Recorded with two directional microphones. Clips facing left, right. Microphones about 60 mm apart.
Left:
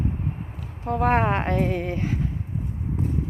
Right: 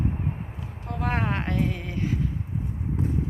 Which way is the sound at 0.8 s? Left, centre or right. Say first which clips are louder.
Left 7 dB; left.